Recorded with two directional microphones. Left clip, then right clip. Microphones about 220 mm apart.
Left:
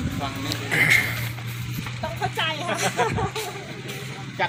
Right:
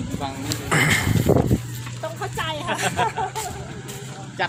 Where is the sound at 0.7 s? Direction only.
25° right (ahead or behind).